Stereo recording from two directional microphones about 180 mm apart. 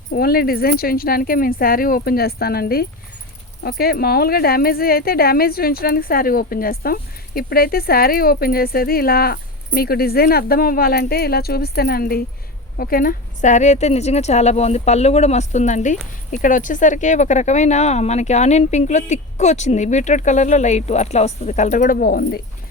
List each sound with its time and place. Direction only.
0.1 s speech: 55° left (ahead or behind)